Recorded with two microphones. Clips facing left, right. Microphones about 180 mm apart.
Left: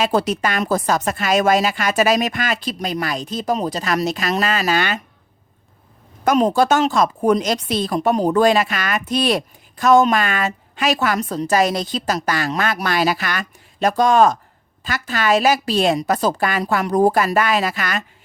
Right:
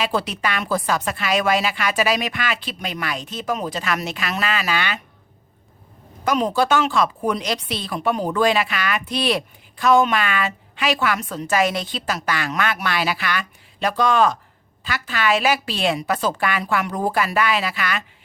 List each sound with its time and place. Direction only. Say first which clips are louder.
0.0 s a woman's voice: left 5 dB; 45° left (ahead or behind)
6.2 s a woman's voice: left 4 dB; 45° left (ahead or behind)